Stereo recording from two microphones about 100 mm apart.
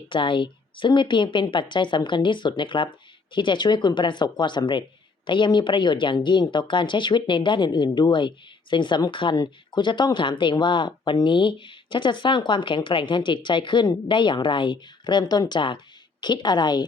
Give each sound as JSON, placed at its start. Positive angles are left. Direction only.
{"t": 0.1, "sound": "speech", "side_deg": 55}
{"t": 9.3, "sound": "speech", "side_deg": 45}